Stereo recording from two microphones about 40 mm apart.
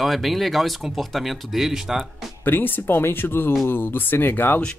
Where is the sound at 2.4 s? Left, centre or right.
Left.